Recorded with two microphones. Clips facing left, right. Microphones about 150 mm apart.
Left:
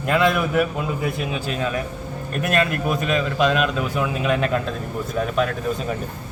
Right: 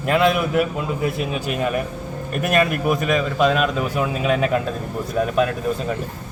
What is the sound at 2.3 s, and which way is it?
A man's voice, 10° right (ahead or behind).